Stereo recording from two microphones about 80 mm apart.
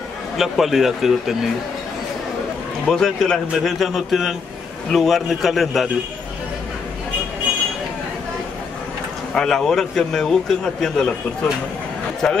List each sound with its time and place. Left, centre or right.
0.4 s a man's voice: centre
2.9 s a man's voice: centre
9.3 s a man's voice: centre
12.2 s a man's voice: centre